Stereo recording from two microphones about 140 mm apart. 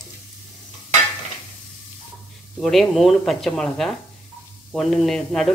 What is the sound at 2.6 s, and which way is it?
Frying, centre (ahead or behind).